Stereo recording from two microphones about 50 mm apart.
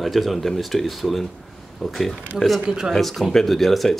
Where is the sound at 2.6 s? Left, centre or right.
Centre.